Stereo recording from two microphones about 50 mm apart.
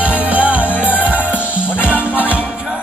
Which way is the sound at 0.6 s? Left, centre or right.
Left.